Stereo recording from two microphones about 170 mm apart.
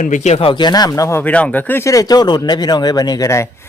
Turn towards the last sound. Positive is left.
turn(degrees=20)  # may be behind; listen again after turning